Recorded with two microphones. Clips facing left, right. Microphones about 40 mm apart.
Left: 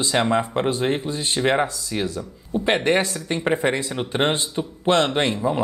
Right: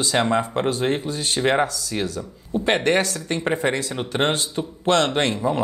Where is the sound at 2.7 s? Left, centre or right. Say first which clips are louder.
Even; centre.